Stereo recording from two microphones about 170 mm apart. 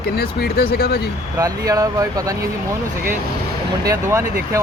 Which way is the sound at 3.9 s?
15° right (ahead or behind).